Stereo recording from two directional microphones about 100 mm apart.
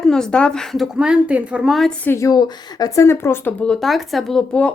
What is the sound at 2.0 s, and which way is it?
Speech, 25° left (ahead or behind).